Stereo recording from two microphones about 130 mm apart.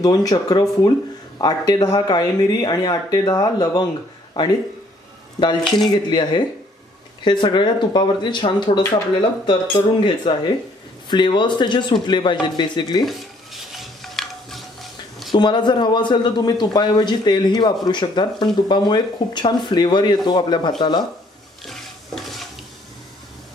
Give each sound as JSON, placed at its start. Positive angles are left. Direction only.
{"t": 0.0, "sound": "a man's voice", "side_deg": 30}
{"t": 5.9, "sound": "a man's voice", "side_deg": 35}
{"t": 13.0, "sound": "stir", "side_deg": 0}
{"t": 15.3, "sound": "a man's voice", "side_deg": 35}